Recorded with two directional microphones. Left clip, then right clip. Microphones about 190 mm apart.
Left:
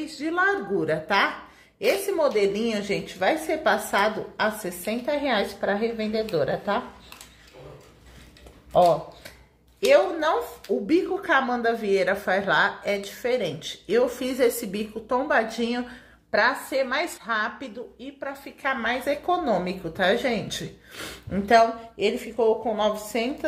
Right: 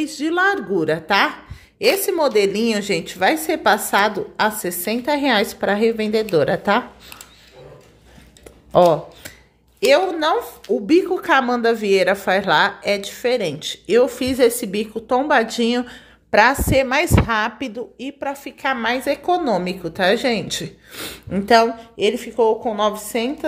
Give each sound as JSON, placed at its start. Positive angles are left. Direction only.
{"t": 0.0, "sound": "a woman's voice", "side_deg": -50}
{"t": 8.7, "sound": "speech", "side_deg": -60}
{"t": 9.8, "sound": "speech", "side_deg": -40}